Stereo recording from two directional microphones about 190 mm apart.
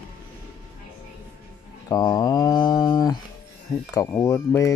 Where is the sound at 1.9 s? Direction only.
20° left (ahead or behind).